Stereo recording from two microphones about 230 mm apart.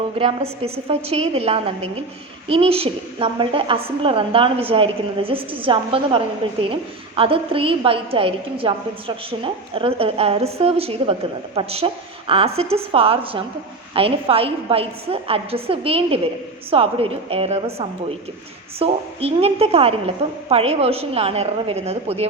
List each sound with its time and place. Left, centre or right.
0.2 s a woman's voice: right